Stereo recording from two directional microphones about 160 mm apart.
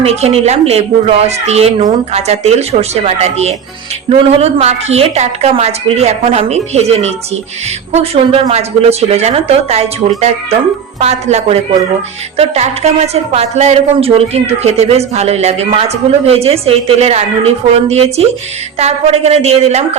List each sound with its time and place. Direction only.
0.0 s a woman's voice: 40° right (ahead or behind)